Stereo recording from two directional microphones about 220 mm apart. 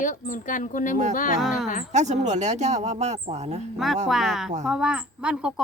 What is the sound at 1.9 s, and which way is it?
Speech, 30° right (ahead or behind).